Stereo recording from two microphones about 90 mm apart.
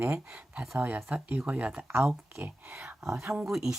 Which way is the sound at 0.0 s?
15° right (ahead or behind).